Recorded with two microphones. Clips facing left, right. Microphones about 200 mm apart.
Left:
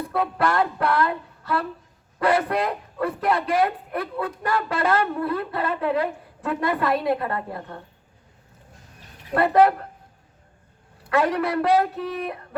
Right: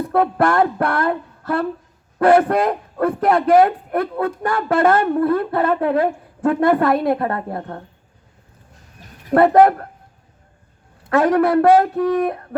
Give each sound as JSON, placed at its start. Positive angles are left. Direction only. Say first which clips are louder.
{"t": 0.1, "sound": "a man's voice", "louder": "right 7 dB", "side_deg": -50}
{"t": 9.3, "sound": "a man's voice", "louder": "right 6 dB", "side_deg": -50}
{"t": 11.1, "sound": "a man's voice", "louder": "right 7 dB", "side_deg": -50}